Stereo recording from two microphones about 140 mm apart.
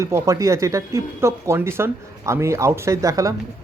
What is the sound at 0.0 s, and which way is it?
Speech, 20° right (ahead or behind).